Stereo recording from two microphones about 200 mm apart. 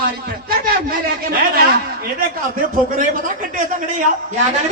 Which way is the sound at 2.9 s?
40° right (ahead or behind).